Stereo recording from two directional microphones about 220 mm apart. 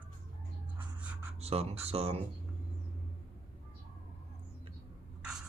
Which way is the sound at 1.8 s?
25° right (ahead or behind).